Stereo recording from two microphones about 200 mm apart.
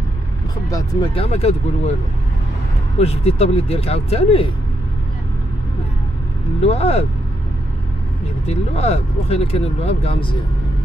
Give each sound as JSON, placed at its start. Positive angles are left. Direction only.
{"t": 0.7, "sound": "speech", "side_deg": 20}
{"t": 1.2, "sound": "speech", "side_deg": 30}
{"t": 3.0, "sound": "speech", "side_deg": 30}
{"t": 6.6, "sound": "speech", "side_deg": 30}
{"t": 8.5, "sound": "speech", "side_deg": 30}